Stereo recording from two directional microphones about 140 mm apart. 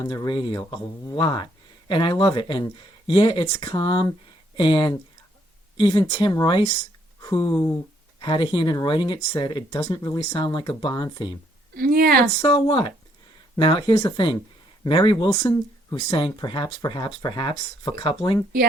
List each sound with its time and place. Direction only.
0.1 s speech: 30° left (ahead or behind)
8.2 s speech: 35° left (ahead or behind)
11.7 s speech: 90° right
12.4 s speech: 35° left (ahead or behind)
16.0 s speech: 40° left (ahead or behind)